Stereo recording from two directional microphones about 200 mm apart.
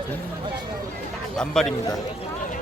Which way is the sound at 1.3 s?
5° left (ahead or behind).